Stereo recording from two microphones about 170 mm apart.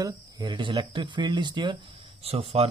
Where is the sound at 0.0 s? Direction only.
30° right (ahead or behind).